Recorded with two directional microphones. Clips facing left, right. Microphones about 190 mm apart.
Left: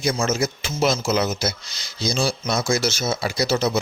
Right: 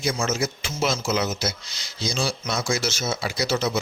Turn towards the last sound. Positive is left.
turn(degrees=35)  # may be behind; listen again after turning